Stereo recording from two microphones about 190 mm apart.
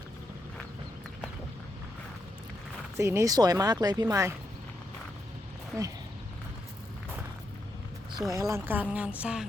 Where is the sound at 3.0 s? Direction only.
15° right (ahead or behind).